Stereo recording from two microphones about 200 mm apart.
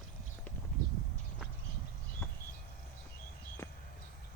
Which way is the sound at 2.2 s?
10° left (ahead or behind).